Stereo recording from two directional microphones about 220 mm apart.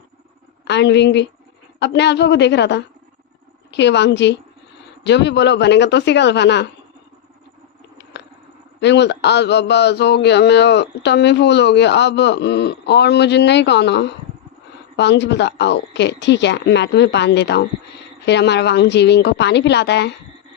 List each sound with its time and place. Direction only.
0.6 s a woman's voice: 50° left (ahead or behind)
8.1 s a sound: 50° left (ahead or behind)
8.8 s a man's voice: 50° left (ahead or behind)